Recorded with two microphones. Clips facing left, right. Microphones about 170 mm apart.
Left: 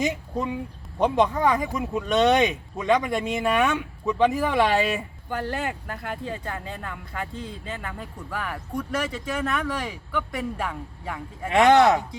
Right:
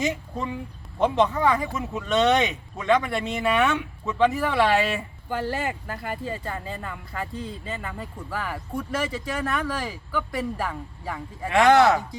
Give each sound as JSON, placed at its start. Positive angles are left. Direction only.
{"t": 0.0, "sound": "speech", "side_deg": 15}
{"t": 5.3, "sound": "speech", "side_deg": -5}
{"t": 11.5, "sound": "speech", "side_deg": 20}